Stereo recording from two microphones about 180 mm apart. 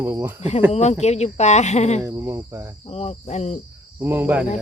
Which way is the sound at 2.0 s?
15° right (ahead or behind).